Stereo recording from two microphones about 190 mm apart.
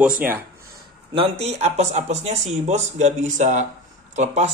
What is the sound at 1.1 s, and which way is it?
Speech, 30° right (ahead or behind).